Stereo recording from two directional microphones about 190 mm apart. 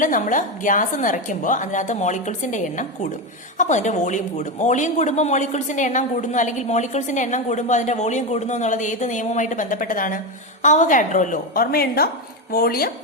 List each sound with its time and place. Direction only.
0.0 s a woman's voice: 45° left (ahead or behind)